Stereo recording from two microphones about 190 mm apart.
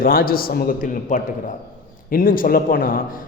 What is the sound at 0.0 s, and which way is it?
A man's voice, 50° left (ahead or behind).